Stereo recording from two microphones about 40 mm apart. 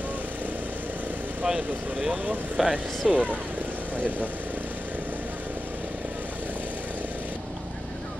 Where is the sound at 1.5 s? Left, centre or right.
Centre.